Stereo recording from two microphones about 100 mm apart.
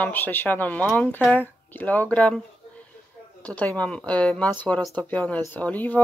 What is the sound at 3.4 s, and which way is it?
Speech, 15° left (ahead or behind).